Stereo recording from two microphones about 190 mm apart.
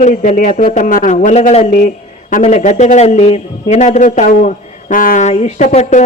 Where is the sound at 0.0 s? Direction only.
40° left (ahead or behind).